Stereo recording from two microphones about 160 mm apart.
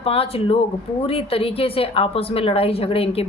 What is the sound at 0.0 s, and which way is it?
Speech, 40° left (ahead or behind).